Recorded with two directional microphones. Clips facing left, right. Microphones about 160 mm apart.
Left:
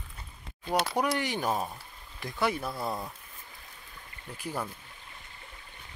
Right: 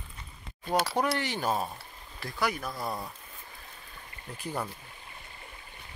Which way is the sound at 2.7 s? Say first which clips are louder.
Left 1 dB; centre (ahead or behind).